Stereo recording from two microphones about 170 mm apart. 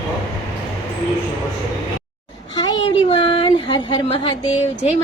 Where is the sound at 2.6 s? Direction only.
30° left (ahead or behind).